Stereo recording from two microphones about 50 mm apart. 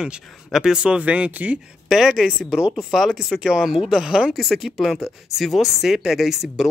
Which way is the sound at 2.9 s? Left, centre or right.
Centre.